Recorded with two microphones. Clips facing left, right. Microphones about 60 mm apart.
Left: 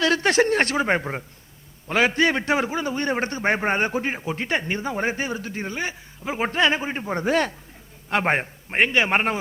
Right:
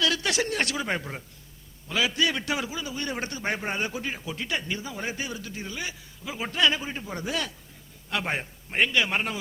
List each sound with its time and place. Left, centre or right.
0.0 s a man's voice: left